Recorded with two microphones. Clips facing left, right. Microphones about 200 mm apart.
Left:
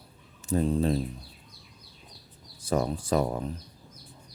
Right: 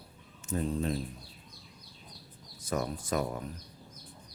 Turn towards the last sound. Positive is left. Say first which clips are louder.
# left 6 dB
turn(degrees=30)  # may be behind; listen again after turning